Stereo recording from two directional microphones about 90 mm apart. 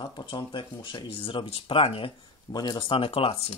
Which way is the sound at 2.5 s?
50° left (ahead or behind).